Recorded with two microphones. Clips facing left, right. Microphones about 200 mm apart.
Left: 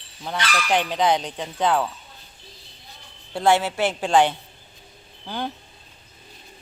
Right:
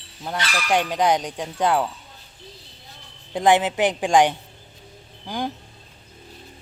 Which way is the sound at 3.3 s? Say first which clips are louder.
Right 2 dB; 15° right (ahead or behind).